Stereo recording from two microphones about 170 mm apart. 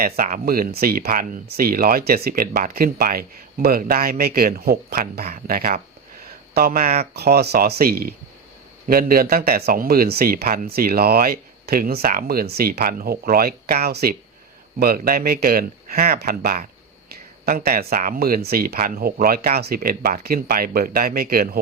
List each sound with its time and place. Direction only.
0.0 s speech: 55° right (ahead or behind)